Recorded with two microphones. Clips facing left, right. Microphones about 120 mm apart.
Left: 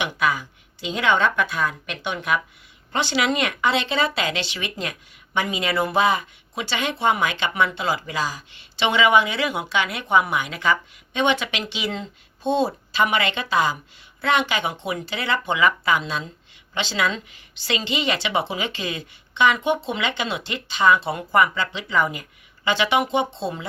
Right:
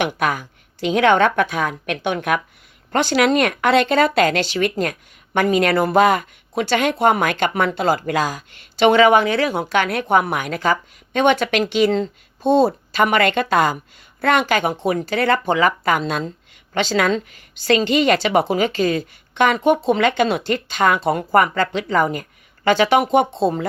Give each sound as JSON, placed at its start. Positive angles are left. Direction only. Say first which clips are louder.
{"t": 0.0, "sound": "a woman's voice", "louder": "right 3 dB", "side_deg": -50}